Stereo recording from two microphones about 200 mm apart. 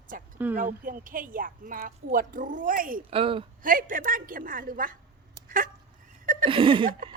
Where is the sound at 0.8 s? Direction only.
45° right (ahead or behind).